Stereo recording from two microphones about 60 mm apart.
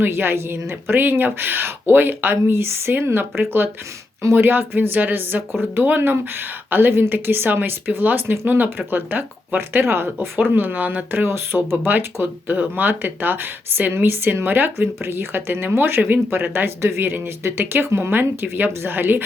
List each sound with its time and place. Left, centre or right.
0.0 s speech: right
11.9 s speech: right